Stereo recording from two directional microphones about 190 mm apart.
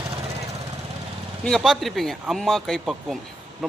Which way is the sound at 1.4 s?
Centre (ahead or behind).